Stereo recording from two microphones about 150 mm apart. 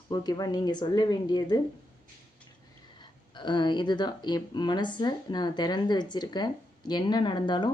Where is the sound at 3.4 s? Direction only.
30° left (ahead or behind).